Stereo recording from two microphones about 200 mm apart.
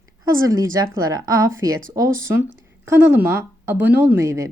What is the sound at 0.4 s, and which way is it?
Speech, 15° right (ahead or behind).